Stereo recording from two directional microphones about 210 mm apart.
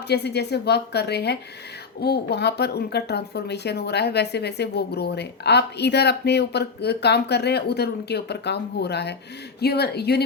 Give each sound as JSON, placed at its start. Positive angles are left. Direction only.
{"t": 0.1, "sound": "speech", "side_deg": 50}